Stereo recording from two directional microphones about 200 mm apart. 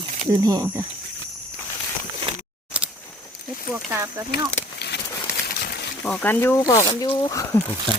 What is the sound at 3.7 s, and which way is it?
Speech, 15° right (ahead or behind).